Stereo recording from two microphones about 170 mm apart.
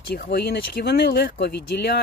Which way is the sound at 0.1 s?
70° left (ahead or behind).